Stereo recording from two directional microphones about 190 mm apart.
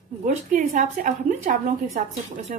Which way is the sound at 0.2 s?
45° right (ahead or behind).